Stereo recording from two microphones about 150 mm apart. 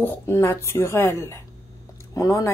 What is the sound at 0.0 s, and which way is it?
Speech, 15° left (ahead or behind).